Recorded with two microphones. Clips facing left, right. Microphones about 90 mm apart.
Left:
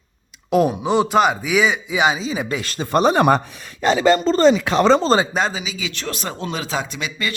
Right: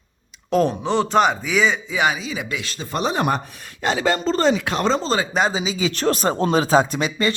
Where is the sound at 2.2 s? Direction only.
35° left (ahead or behind).